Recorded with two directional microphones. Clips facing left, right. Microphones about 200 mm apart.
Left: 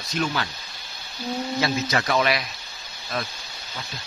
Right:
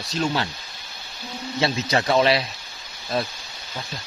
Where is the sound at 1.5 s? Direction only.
25° right (ahead or behind).